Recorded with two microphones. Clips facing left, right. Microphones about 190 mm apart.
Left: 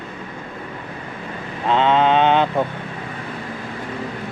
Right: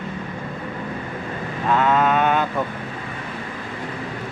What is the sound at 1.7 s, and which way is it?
Speech, 25° left (ahead or behind).